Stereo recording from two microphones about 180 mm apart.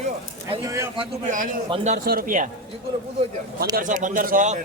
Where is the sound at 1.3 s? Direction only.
45° right (ahead or behind).